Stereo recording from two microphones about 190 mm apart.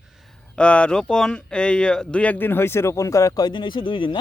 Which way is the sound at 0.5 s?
5° left (ahead or behind).